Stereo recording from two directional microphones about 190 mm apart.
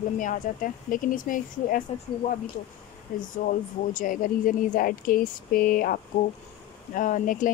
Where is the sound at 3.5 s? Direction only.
45° left (ahead or behind).